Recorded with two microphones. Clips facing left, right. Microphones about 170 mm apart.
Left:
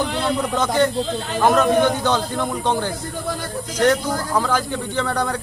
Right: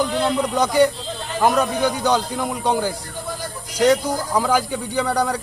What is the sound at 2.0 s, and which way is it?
Speech, 10° right (ahead or behind).